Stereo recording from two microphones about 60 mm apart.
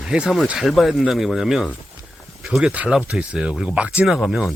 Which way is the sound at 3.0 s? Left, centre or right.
Right.